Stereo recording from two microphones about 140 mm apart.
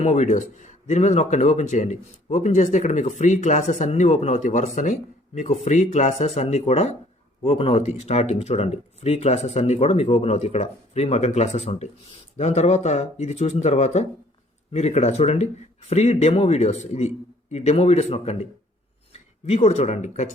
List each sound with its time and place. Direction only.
0.0 s speech: 55° left (ahead or behind)